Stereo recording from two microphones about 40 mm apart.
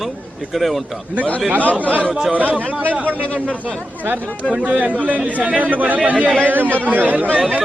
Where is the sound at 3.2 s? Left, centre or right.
Left.